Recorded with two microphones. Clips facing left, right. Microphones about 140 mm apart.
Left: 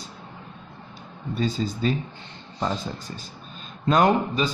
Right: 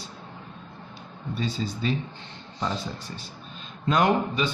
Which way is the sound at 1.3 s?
45° left (ahead or behind).